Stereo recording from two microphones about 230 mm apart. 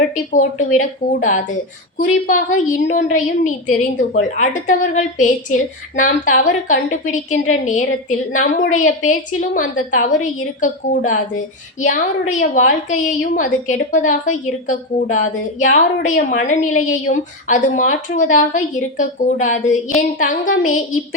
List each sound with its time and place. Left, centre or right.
0.3 s a woman's voice: left
12.3 s a woman's voice: left